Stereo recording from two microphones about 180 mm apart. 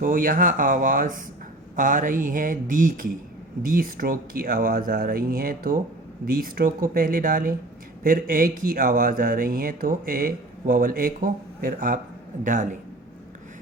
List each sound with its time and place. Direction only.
0.0 s speech: 50° right (ahead or behind)